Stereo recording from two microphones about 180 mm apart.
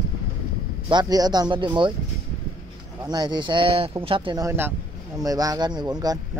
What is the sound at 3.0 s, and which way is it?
Speech, 25° right (ahead or behind).